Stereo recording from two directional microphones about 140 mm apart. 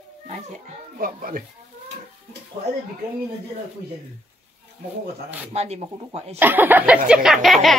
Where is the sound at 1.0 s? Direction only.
85° right.